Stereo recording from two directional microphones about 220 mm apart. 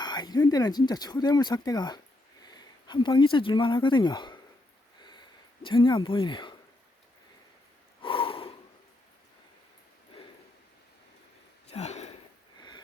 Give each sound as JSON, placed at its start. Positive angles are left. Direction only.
{"t": 0.0, "sound": "speech", "side_deg": 20}
{"t": 4.9, "sound": "a sound", "side_deg": 20}
{"t": 5.6, "sound": "speech", "side_deg": 20}
{"t": 8.0, "sound": "snort", "side_deg": 25}
{"t": 11.7, "sound": "sniff", "side_deg": 30}
{"t": 12.5, "sound": "a sound", "side_deg": 20}